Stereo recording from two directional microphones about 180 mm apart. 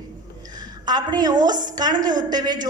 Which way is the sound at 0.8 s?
25° right (ahead or behind).